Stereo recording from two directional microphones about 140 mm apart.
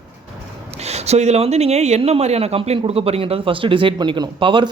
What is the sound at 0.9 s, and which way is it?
Speech, 50° right (ahead or behind).